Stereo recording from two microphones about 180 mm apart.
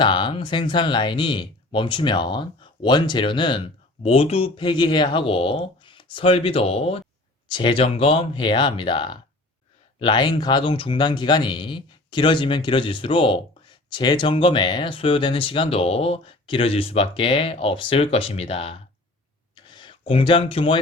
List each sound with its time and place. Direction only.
0.0 s speech: 25° left (ahead or behind)